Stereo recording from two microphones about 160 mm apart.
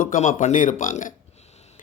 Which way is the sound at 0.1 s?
55° left (ahead or behind).